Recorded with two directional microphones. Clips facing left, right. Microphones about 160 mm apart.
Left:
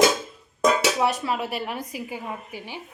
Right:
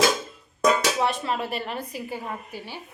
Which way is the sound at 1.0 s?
10° left (ahead or behind).